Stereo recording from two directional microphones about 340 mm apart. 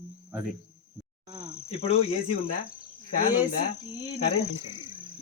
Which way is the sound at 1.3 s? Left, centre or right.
Centre.